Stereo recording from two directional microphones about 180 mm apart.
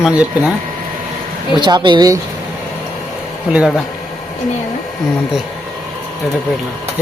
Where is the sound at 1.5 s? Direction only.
25° right (ahead or behind).